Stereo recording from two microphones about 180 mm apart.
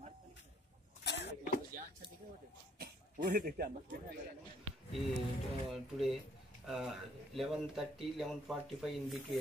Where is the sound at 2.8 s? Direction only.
55° right (ahead or behind).